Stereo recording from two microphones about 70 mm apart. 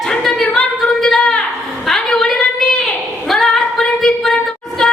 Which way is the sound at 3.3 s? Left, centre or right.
Centre.